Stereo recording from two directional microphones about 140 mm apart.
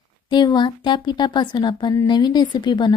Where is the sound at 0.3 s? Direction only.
30° left (ahead or behind).